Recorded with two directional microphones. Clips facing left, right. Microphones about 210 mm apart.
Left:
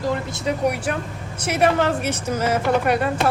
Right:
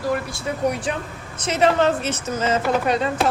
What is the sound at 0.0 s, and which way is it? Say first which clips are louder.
Speech: left 1 dB; 20° left (ahead or behind).